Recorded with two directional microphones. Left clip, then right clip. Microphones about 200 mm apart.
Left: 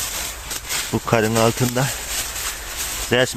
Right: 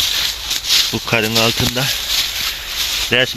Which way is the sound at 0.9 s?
5° left (ahead or behind).